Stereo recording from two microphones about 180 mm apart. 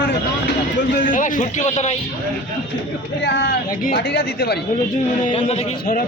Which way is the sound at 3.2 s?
65° left (ahead or behind).